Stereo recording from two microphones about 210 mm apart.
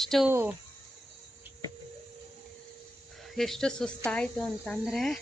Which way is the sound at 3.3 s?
Centre (ahead or behind).